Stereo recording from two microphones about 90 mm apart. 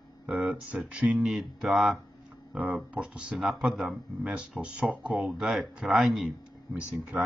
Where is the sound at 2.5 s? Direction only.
15° right (ahead or behind).